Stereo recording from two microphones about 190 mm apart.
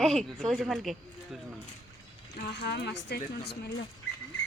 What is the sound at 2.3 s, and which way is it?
Speech, 55° left (ahead or behind).